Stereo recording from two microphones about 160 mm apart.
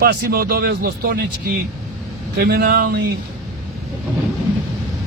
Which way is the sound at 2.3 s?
90° right.